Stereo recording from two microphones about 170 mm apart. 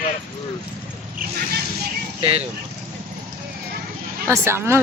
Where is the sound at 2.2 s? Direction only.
35° right (ahead or behind).